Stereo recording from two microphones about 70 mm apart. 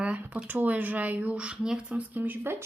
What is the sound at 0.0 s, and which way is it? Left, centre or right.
Speech, centre.